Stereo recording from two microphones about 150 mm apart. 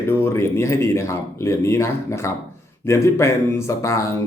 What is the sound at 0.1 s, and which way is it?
Speech, 15° left (ahead or behind).